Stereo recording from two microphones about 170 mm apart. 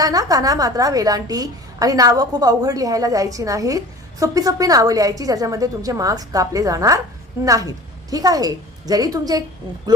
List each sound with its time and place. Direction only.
0.0 s a woman's voice: 20° right (ahead or behind)